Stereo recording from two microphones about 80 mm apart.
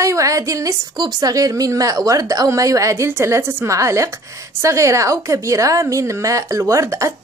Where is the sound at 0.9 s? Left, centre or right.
Right.